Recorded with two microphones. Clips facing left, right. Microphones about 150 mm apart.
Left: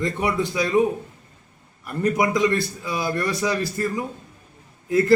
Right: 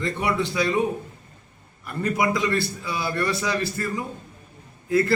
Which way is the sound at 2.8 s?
15° left (ahead or behind).